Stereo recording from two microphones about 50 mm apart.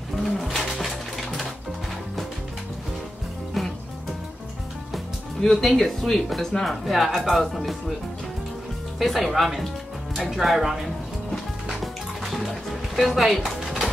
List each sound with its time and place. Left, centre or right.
0.1 s pigeon: centre
3.6 s music: centre
4.9 s speech: centre
9.0 s speech: centre
11.8 s music: centre